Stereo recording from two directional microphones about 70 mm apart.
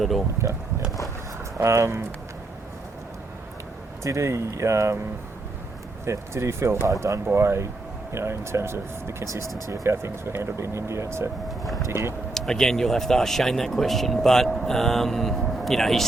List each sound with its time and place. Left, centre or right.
1.5 s speech: right
4.0 s speech: right
6.1 s speech: right
11.4 s speech: centre
11.9 s speech: right
12.3 s speech: centre